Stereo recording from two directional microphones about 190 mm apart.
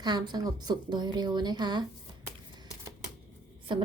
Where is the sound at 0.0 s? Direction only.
20° right (ahead or behind).